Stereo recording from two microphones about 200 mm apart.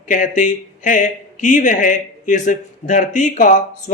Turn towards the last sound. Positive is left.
turn(degrees=40)  # may be behind; listen again after turning